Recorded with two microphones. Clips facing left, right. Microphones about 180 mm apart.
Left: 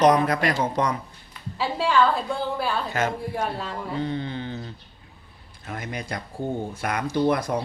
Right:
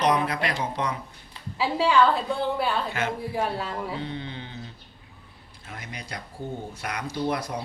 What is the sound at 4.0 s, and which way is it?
Speech, 45° left (ahead or behind).